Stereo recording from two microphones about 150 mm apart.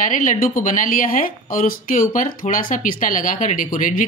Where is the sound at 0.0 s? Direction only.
60° left (ahead or behind).